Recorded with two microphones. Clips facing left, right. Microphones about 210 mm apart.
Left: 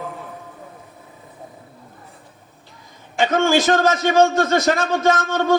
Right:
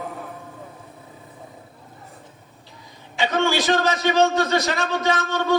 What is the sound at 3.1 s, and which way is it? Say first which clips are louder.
A man's voice: left 4 dB; 50° left (ahead or behind).